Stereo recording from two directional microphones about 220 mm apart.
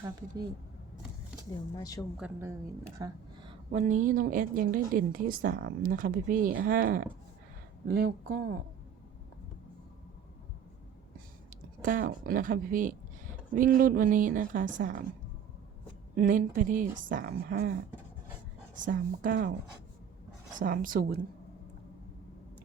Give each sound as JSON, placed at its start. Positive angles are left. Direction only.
{"t": 0.0, "sound": "speech", "side_deg": -15}
{"t": 1.7, "sound": "a woman's voice", "side_deg": 15}
{"t": 2.1, "sound": "a woman's voice", "side_deg": -5}
{"t": 3.0, "sound": "a sound", "side_deg": -20}
{"t": 3.7, "sound": "a woman's voice", "side_deg": -35}
{"t": 11.8, "sound": "a woman's voice", "side_deg": -40}
{"t": 16.1, "sound": "a woman's voice", "side_deg": -40}
{"t": 18.8, "sound": "a woman's voice", "side_deg": -35}
{"t": 20.6, "sound": "a woman's voice", "side_deg": -40}